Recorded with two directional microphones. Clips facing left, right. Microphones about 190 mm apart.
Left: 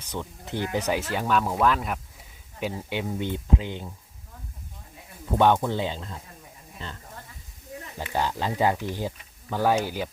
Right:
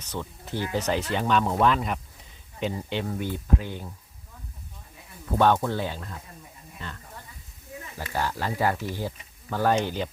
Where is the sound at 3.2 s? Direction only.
20° left (ahead or behind).